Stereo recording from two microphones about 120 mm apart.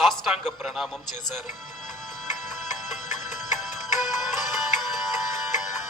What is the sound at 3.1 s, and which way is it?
Music, 90° left.